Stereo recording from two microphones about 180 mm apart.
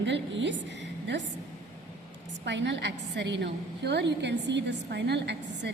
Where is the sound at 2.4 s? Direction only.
80° right.